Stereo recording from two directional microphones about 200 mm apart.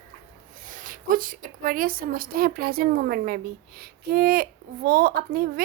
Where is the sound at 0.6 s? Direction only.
40° right (ahead or behind).